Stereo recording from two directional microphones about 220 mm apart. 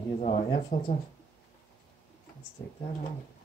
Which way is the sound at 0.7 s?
35° left (ahead or behind).